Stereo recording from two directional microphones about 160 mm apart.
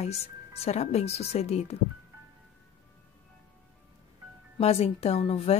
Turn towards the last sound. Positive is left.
turn(degrees=40)  # may be behind; listen again after turning